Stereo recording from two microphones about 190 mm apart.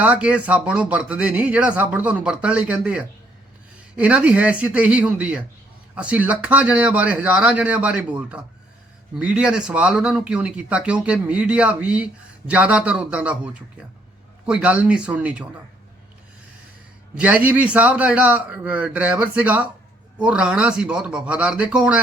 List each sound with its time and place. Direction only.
0.0 s speech: 5° right (ahead or behind)
17.2 s speech: 5° right (ahead or behind)